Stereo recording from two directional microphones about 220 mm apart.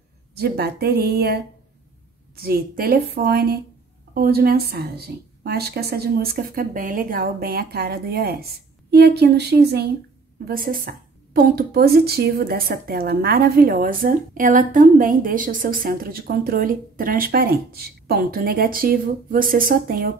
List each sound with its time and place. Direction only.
0.4 s a woman's voice: 45° right (ahead or behind)